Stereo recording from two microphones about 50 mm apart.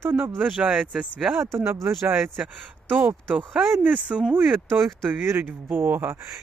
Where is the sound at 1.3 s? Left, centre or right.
Right.